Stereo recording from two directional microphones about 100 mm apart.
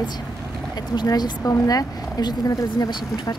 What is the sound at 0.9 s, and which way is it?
Speech, 45° left (ahead or behind).